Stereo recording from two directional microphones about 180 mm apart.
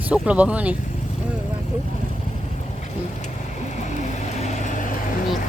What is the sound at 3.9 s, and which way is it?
Vehicle, 40° left (ahead or behind).